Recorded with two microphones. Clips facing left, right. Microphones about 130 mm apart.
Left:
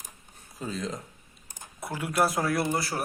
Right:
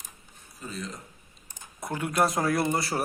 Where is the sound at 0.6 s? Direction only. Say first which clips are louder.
Left 5 dB; 90° left.